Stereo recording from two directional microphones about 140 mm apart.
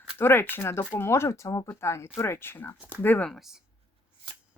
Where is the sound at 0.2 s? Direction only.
15° left (ahead or behind); by 3.6 s centre (ahead or behind).